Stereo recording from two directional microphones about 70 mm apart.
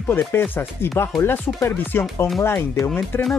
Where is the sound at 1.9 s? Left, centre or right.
Left.